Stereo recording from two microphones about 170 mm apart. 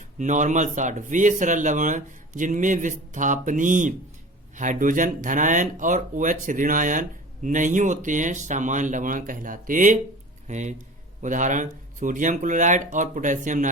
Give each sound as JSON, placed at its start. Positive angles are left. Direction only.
{"t": 0.2, "sound": "speech", "side_deg": -45}